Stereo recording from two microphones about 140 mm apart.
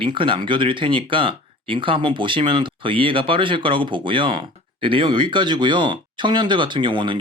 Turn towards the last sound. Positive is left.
turn(degrees=-35)  # may be behind; listen again after turning